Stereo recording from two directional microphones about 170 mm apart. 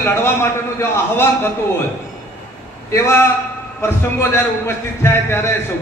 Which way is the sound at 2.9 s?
15° left (ahead or behind).